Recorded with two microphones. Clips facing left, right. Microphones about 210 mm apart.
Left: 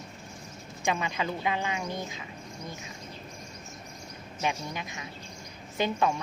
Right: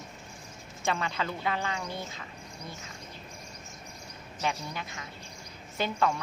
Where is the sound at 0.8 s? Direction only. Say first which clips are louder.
Left 1 dB; 15° left (ahead or behind).